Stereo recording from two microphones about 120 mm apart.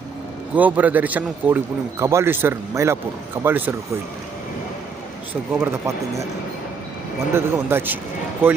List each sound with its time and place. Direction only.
0.5 s a man's voice: 15° right (ahead or behind)
5.3 s speech: 20° right (ahead or behind)
7.3 s a man's voice: 20° right (ahead or behind)